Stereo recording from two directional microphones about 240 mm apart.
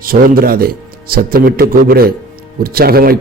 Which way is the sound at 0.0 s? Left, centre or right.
Right.